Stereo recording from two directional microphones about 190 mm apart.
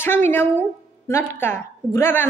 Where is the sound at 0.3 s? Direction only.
10° left (ahead or behind).